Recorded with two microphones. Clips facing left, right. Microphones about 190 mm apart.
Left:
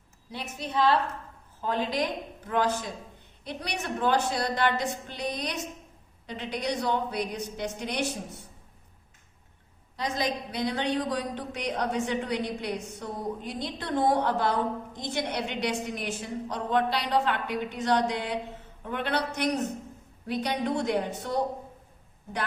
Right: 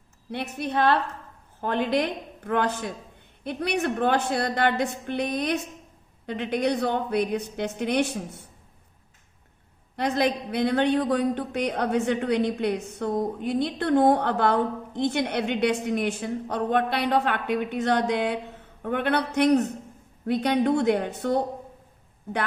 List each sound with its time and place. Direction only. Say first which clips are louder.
0.3 s a woman's voice: right 6 dB; 60° right (ahead or behind)
9.9 s a woman's voice: right 6 dB; 60° right (ahead or behind)